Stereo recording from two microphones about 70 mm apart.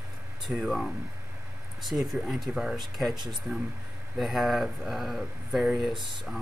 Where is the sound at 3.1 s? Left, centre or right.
Right.